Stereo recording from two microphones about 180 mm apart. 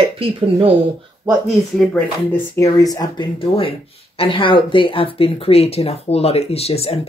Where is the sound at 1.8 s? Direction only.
10° left (ahead or behind).